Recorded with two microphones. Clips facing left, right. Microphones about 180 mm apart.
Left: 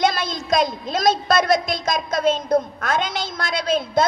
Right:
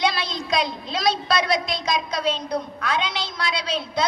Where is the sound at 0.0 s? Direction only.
45° left (ahead or behind).